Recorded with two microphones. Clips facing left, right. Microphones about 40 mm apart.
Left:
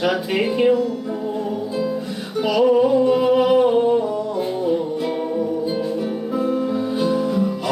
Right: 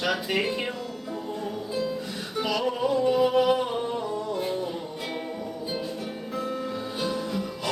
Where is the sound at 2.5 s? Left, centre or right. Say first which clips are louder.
Left 11 dB; centre.